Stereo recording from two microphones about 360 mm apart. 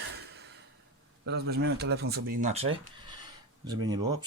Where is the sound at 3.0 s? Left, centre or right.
Centre.